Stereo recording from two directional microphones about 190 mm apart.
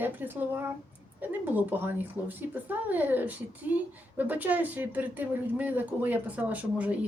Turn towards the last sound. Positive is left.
turn(degrees=-5)  # may be behind; listen again after turning